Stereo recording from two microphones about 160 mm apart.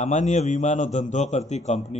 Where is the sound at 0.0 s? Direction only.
50° left (ahead or behind).